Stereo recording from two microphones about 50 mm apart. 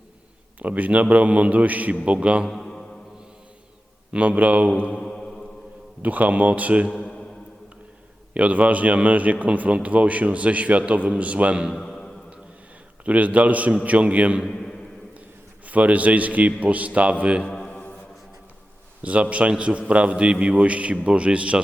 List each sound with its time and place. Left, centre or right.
0.6 s a man's voice: right
2.5 s mantra: centre
4.1 s a man's voice: right
4.8 s mantra: left
5.0 s mantra: centre
6.0 s a man's voice: right
6.9 s a man's voice: centre
8.3 s a man's voice: right
11.7 s a sound: centre
13.1 s a man's voice: right
14.5 s a sound: centre
15.6 s a man's voice: right
17.4 s music: centre
19.0 s a man's voice: right